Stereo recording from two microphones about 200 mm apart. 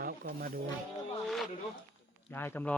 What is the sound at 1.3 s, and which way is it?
Speech, centre (ahead or behind).